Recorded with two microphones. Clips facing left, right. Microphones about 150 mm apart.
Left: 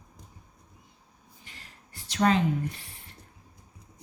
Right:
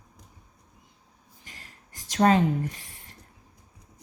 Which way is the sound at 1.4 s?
45° right (ahead or behind).